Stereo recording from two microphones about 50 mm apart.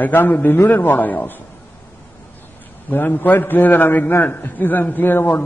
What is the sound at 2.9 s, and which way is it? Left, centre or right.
A man's voice, left.